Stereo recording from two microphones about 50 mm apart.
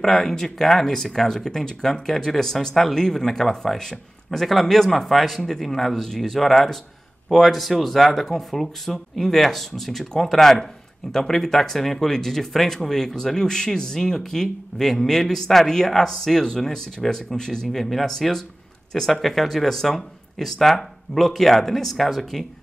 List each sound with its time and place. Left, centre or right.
0.0 s speech: centre